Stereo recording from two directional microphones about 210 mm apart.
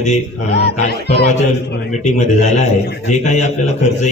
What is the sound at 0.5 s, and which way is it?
Speech, 50° left (ahead or behind).